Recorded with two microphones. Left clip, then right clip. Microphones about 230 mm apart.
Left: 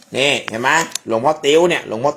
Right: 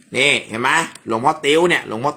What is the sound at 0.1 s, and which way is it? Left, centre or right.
Speech, centre.